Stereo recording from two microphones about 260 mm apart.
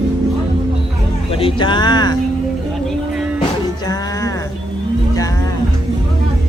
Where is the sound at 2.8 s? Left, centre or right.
Centre.